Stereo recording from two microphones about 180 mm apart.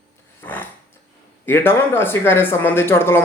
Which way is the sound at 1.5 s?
10° left (ahead or behind).